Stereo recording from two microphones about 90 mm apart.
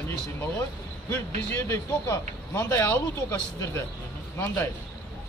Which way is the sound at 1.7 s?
30° left (ahead or behind).